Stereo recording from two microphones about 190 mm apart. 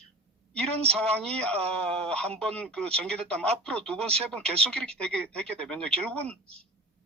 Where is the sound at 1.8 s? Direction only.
5° left (ahead or behind).